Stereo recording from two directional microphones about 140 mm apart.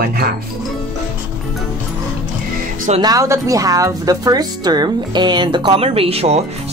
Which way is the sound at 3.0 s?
25° right (ahead or behind).